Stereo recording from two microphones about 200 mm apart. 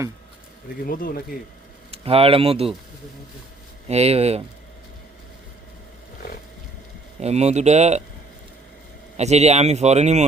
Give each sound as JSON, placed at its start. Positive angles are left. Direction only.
{"t": 0.9, "sound": "speech", "side_deg": 45}
{"t": 1.9, "sound": "speech", "side_deg": -30}
{"t": 3.8, "sound": "speech", "side_deg": -30}
{"t": 6.1, "sound": "a sound", "side_deg": 50}
{"t": 7.2, "sound": "speech", "side_deg": -35}
{"t": 9.1, "sound": "speech", "side_deg": -35}